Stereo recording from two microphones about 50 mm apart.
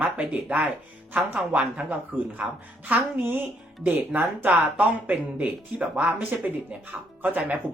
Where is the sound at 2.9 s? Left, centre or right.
Right.